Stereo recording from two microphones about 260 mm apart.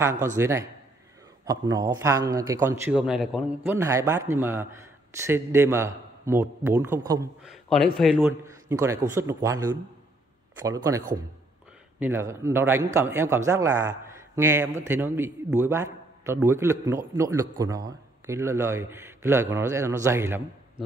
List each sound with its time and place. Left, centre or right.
0.0 s a man's voice: centre